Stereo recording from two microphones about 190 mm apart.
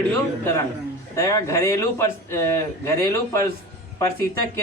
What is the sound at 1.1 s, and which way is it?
Speech, 15° left (ahead or behind).